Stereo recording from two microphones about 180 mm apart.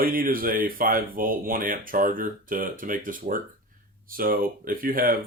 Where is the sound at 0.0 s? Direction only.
50° right (ahead or behind).